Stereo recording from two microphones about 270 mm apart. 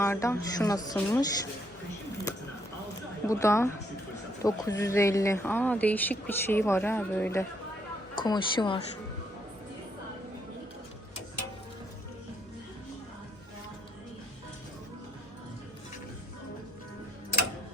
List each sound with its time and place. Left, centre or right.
0.0 s speech: centre
3.2 s speech: centre